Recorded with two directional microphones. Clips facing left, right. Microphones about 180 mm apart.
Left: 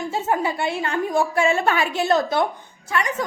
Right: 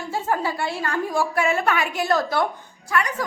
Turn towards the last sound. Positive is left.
turn(degrees=25)  # may be behind; listen again after turning